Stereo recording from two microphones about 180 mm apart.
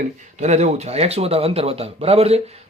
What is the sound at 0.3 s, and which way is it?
Speech, 40° right (ahead or behind).